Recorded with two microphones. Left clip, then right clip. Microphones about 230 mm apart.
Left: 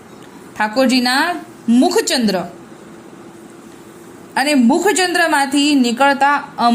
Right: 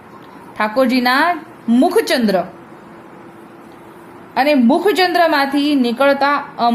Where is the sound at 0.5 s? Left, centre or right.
Centre.